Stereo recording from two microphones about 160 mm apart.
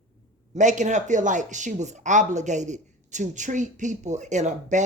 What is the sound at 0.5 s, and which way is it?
Speech, 50° right (ahead or behind).